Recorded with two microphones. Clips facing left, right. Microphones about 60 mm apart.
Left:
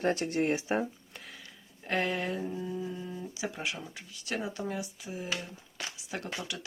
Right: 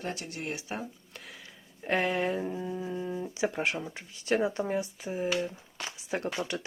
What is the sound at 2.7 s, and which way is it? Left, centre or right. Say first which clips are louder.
Speech: right 3 dB; right.